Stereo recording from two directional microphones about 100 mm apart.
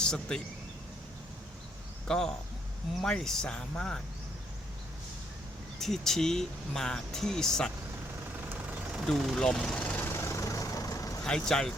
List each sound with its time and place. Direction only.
0.0 s speech: 5° left (ahead or behind)
2.0 s speech: 5° left (ahead or behind)
5.8 s speech: 5° left (ahead or behind)
8.4 s vehicle: 15° right (ahead or behind)
9.0 s vehicle: centre (ahead or behind); by 11.2 s 35° left (ahead or behind)
11.2 s speech: 5° left (ahead or behind)